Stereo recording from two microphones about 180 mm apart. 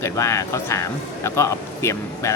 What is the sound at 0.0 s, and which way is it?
Speech, 15° left (ahead or behind).